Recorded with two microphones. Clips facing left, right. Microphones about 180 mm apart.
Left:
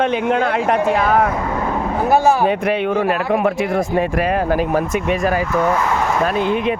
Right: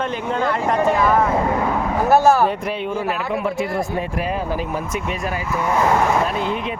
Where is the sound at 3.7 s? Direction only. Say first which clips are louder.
Left 5 dB; 85° left; by 5.4 s 60° left (ahead or behind).